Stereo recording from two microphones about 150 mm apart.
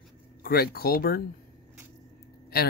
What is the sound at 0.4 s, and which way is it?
Speech, 90° left.